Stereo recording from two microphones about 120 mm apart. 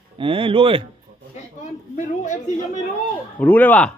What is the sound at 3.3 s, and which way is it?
Speech, 15° left (ahead or behind).